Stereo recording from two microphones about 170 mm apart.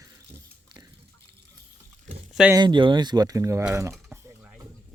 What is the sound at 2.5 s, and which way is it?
Speech, 25° right (ahead or behind).